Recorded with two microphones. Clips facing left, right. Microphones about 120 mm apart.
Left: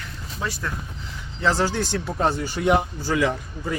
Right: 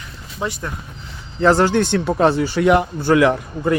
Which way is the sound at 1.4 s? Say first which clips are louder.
Right 8 dB; 55° right (ahead or behind).